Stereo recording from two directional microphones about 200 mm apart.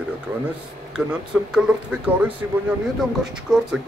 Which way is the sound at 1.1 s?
5° right (ahead or behind).